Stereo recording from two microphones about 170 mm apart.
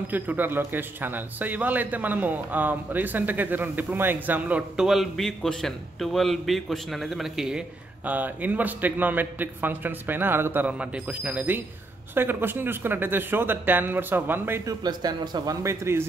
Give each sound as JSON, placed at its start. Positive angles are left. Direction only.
{"t": 0.1, "sound": "speech", "side_deg": -10}